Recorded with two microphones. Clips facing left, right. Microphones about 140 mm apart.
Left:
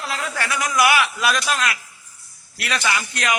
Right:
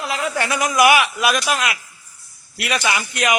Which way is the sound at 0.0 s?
15° right (ahead or behind).